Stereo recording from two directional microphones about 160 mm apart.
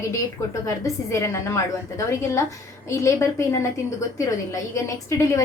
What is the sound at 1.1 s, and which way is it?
A woman's voice, 20° left (ahead or behind).